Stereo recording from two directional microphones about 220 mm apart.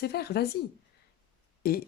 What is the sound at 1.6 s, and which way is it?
Speech, 45° left (ahead or behind).